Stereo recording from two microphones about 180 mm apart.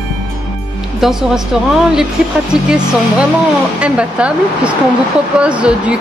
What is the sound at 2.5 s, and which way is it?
Speech, 5° right (ahead or behind).